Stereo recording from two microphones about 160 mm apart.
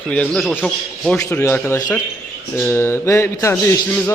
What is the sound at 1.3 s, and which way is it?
A man's voice, 10° left (ahead or behind).